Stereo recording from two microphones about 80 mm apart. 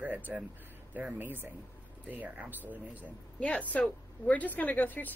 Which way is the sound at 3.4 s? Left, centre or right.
Centre.